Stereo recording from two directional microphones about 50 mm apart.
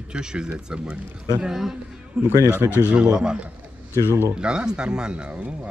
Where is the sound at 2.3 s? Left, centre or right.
Right.